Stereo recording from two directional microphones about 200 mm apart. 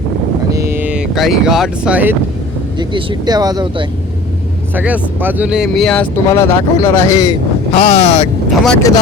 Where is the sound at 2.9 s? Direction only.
20° right (ahead or behind).